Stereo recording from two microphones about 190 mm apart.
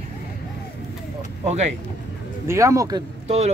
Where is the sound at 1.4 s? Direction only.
35° right (ahead or behind).